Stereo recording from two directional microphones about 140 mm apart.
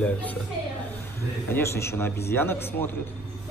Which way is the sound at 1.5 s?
20° left (ahead or behind).